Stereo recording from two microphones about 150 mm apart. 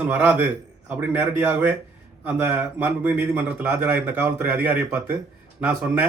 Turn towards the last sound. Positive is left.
turn(degrees=-10)  # may be behind; listen again after turning